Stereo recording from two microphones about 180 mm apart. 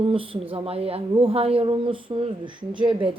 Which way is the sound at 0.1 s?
30° right (ahead or behind).